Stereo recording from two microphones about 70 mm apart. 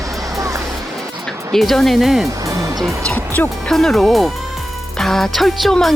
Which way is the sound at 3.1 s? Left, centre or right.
Left.